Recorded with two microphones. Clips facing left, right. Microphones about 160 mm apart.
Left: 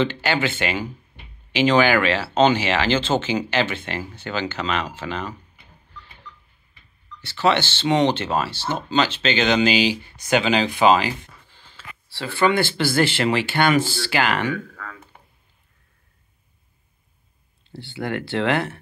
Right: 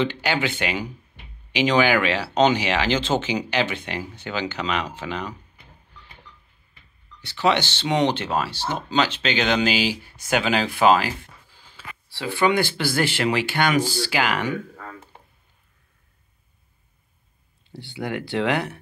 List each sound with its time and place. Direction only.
0.0 s speech: 15° right (ahead or behind)
7.2 s speech: 15° right (ahead or behind)
14.8 s a sound: 30° right (ahead or behind)
18.0 s speech: 15° right (ahead or behind)